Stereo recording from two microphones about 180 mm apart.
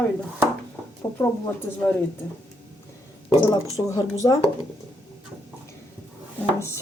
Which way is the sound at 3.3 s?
25° left (ahead or behind).